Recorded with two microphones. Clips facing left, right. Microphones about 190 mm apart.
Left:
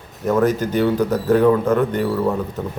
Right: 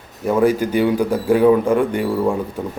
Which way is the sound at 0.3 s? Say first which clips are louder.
Right 2 dB; 10° right (ahead or behind).